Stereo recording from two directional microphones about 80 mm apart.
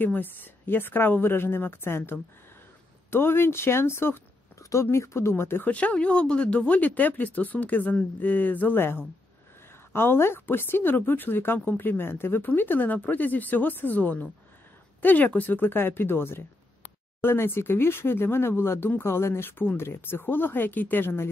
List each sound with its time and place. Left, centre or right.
0.0 s speech: left
4.6 s a sound: left
4.9 s speech: left
5.7 s speech: centre